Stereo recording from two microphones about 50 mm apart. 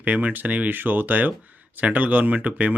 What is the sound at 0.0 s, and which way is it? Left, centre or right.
Speech, right.